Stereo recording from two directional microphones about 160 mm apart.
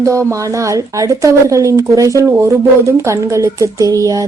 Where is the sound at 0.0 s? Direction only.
20° right (ahead or behind).